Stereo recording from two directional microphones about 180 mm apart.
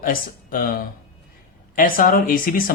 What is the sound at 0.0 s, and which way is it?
Speech, 50° left (ahead or behind).